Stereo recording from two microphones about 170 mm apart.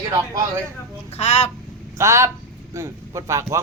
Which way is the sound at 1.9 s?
15° right (ahead or behind).